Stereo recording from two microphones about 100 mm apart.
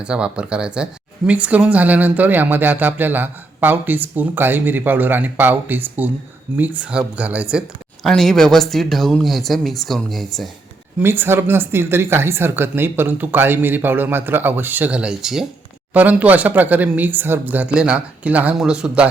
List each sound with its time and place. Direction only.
0.0 s speech: 10° right (ahead or behind)
8.0 s speech: 5° left (ahead or behind)
11.0 s speech: 20° right (ahead or behind); by 15.4 s 5° right (ahead or behind)
15.9 s speech: 15° right (ahead or behind)